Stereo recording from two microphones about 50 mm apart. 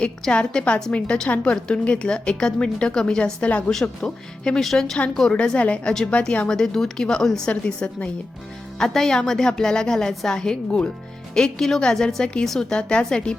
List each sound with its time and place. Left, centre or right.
0.0 s a woman's voice: left
3.7 s a woman's voice: centre
5.3 s a woman's voice: left
6.4 s a woman's voice: centre
7.4 s a woman's voice: left
8.8 s a woman's voice: centre